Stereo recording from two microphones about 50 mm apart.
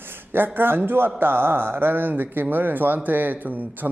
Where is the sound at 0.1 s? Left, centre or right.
Right.